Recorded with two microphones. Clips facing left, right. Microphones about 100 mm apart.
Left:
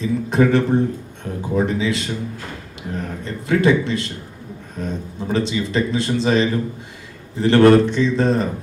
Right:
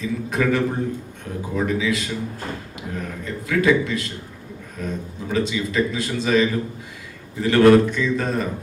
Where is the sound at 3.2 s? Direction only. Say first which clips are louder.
Left 2 dB; 30° left (ahead or behind).